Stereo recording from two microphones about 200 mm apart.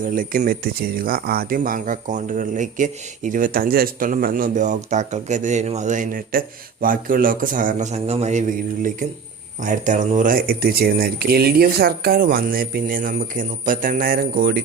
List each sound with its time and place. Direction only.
0.0 s a man's voice: 45° right (ahead or behind)